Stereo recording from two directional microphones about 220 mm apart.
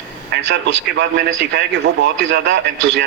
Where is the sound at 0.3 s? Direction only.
55° right (ahead or behind).